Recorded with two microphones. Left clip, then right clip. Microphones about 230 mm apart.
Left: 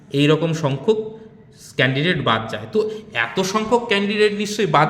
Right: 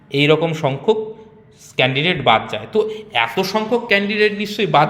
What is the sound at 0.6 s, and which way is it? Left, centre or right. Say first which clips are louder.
Speech: right 2 dB; centre.